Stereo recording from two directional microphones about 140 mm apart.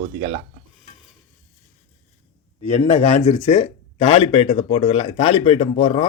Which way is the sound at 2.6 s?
50° left (ahead or behind).